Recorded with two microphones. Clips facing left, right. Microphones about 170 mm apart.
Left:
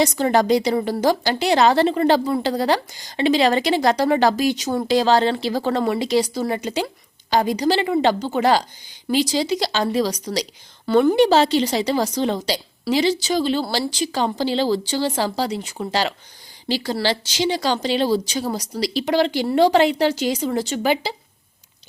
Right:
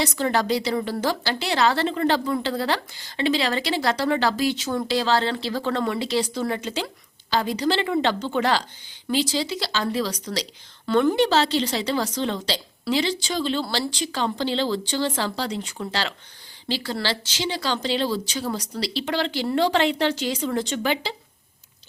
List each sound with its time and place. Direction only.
0.0 s a woman's voice: 15° left (ahead or behind)